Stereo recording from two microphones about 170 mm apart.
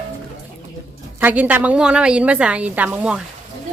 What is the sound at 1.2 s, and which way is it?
A woman's voice, 10° right (ahead or behind).